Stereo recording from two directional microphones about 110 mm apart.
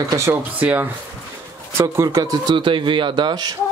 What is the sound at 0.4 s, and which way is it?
Speech, 15° right (ahead or behind).